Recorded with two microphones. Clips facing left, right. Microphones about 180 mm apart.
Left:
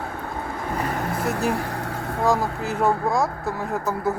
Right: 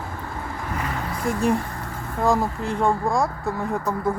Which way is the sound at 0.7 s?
45° left (ahead or behind).